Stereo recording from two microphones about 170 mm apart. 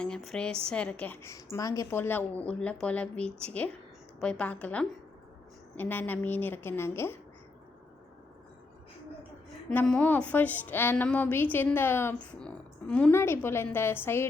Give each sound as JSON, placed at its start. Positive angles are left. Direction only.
{"t": 0.0, "sound": "a woman's voice", "side_deg": 5}
{"t": 9.6, "sound": "a woman's voice", "side_deg": 5}